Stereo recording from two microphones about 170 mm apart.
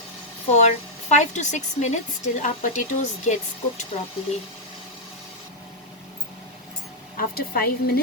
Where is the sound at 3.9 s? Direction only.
35° left (ahead or behind).